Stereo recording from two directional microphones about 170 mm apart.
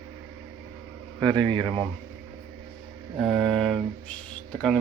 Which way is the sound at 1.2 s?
25° right (ahead or behind).